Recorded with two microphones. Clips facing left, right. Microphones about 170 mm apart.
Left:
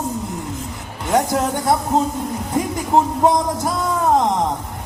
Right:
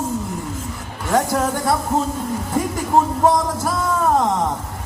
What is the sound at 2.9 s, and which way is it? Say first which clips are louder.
Speech: left 1 dB; 20° left (ahead or behind).